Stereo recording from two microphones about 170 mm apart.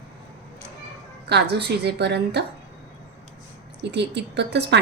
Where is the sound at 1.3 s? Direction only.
75° right (ahead or behind).